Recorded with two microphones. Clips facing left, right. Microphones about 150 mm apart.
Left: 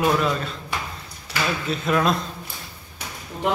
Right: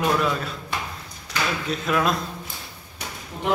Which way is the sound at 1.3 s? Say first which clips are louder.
Left 1 dB; centre (ahead or behind).